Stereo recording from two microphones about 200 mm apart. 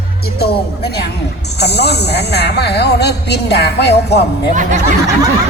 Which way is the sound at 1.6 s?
55° left (ahead or behind).